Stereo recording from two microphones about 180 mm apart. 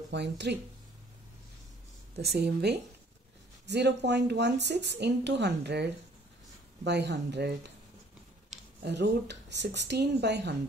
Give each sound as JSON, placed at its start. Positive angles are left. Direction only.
{"t": 0.1, "sound": "speech", "side_deg": -70}
{"t": 2.3, "sound": "a woman's voice", "side_deg": -65}
{"t": 8.8, "sound": "speech", "side_deg": -70}